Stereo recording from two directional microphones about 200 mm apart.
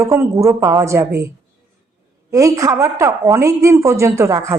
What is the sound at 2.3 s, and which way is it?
Speech, 15° right (ahead or behind).